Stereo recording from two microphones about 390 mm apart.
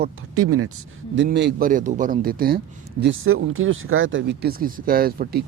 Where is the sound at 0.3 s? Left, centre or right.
Right.